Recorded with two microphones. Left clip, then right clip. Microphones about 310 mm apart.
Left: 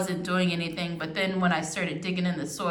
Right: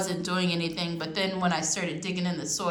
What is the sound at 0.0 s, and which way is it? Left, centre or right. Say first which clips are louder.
A woman's voice: left 1 dB; centre.